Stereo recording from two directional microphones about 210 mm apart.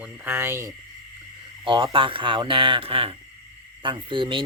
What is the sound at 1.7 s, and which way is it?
Speech, 25° right (ahead or behind).